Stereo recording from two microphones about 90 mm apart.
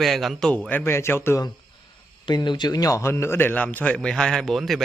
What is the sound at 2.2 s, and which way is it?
A man's voice, 55° left (ahead or behind).